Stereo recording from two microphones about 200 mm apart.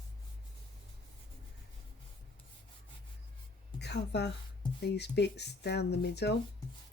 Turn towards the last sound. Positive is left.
turn(degrees=55)  # may be behind; listen again after turning